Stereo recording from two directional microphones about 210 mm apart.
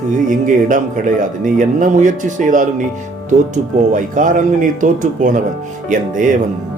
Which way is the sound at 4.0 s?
40° right (ahead or behind).